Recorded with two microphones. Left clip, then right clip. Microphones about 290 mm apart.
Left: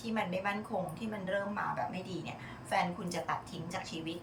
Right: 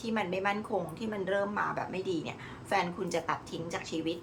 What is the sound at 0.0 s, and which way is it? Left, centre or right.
A woman's voice, centre.